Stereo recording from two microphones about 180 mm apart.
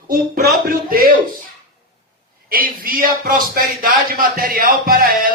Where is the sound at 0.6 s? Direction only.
50° right (ahead or behind).